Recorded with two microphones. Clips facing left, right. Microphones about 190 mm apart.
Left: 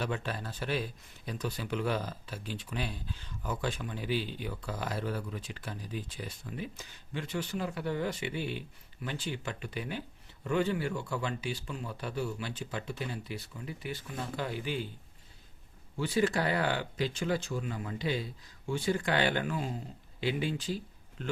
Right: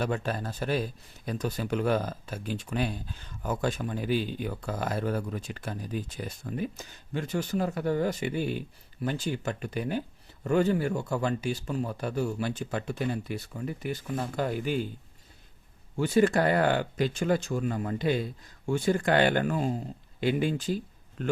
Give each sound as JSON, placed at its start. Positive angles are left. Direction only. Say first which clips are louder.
{"t": 0.0, "sound": "speech", "louder": "right 5 dB", "side_deg": -45}
{"t": 16.0, "sound": "speech", "louder": "right 6 dB", "side_deg": -50}